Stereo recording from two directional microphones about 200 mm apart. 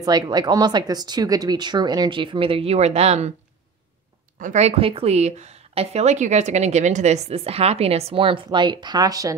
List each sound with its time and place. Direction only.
0.0 s speech: 20° right (ahead or behind)
4.4 s speech: 35° right (ahead or behind); by 9.3 s 20° right (ahead or behind)